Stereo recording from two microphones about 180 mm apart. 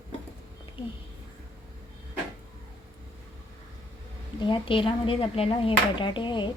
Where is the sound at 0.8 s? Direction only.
30° left (ahead or behind).